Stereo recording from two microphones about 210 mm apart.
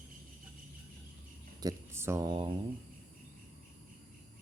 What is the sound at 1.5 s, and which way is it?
Speech, 15° right (ahead or behind).